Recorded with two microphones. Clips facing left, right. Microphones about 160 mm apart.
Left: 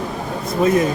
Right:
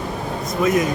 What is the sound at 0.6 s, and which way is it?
Speech, 30° left (ahead or behind).